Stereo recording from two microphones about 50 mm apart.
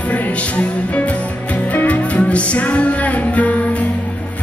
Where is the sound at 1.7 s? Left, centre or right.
Left.